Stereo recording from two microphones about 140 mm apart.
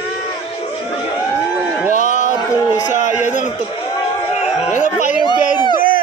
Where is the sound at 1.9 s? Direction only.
60° left (ahead or behind).